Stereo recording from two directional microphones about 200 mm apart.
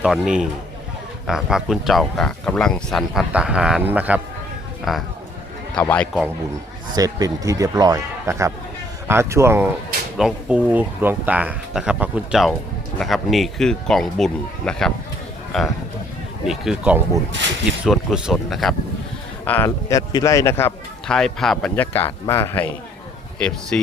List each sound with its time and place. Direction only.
0.0 s a man's voice: 5° right (ahead or behind)
6.9 s speech: 15° right (ahead or behind); by 18.7 s centre (ahead or behind)
19.5 s speech: 10° left (ahead or behind)